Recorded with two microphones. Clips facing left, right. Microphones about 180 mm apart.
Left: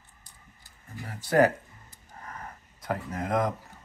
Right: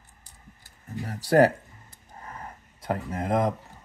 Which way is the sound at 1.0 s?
35° right (ahead or behind).